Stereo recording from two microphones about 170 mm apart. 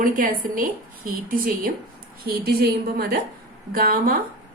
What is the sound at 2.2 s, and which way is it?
A woman's voice, 65° right (ahead or behind).